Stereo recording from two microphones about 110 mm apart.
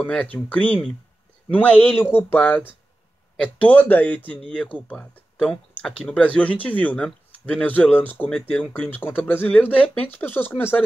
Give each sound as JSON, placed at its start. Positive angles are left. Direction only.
{"t": 0.0, "sound": "speech", "side_deg": 10}